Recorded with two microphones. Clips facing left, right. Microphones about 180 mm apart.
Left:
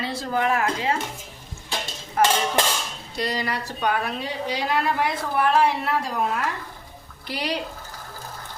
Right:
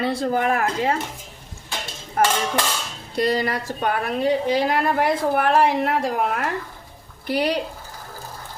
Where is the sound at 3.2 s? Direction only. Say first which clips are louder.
Right 6 dB; 50° right (ahead or behind).